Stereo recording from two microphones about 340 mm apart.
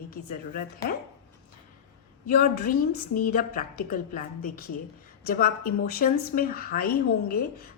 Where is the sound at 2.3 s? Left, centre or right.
Left.